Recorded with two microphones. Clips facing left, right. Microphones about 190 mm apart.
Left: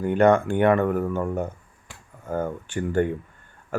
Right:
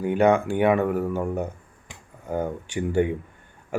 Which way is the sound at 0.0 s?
10° right (ahead or behind).